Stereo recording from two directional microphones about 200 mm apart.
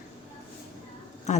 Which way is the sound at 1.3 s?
35° left (ahead or behind).